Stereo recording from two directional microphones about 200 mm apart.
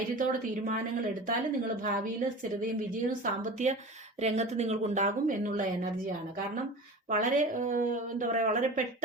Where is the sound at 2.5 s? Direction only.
40° right (ahead or behind).